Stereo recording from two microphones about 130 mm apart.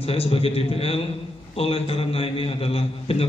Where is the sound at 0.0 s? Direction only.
50° left (ahead or behind).